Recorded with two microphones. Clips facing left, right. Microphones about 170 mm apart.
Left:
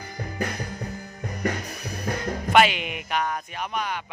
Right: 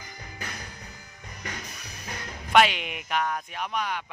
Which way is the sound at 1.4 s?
60° left (ahead or behind).